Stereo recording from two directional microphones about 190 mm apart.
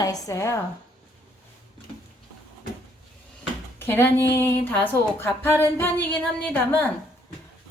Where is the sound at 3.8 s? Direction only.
10° left (ahead or behind).